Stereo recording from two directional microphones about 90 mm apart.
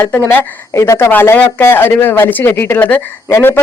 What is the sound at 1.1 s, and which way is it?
A woman's voice, 20° left (ahead or behind).